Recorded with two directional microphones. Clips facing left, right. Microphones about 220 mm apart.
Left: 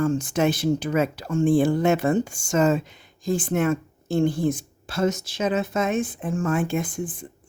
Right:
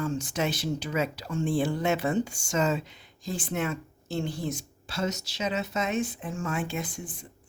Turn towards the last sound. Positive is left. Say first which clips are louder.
# left 8 dB
turn(degrees=50)  # may be behind; listen again after turning